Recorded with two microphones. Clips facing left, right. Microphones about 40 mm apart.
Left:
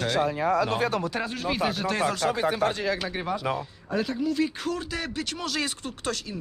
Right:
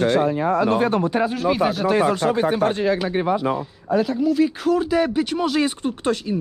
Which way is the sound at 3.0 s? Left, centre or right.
Right.